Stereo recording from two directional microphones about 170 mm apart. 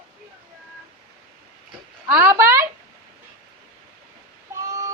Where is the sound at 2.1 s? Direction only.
15° right (ahead or behind).